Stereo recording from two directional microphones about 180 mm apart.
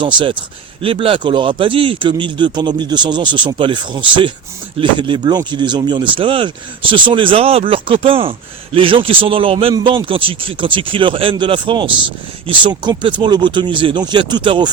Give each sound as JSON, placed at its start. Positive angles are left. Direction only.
{"t": 0.0, "sound": "speech", "side_deg": -25}